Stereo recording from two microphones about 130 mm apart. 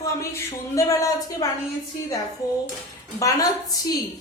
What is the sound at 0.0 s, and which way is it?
Speech, 25° left (ahead or behind).